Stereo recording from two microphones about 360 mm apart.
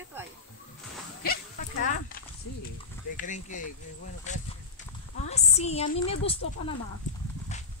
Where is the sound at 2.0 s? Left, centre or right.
Left.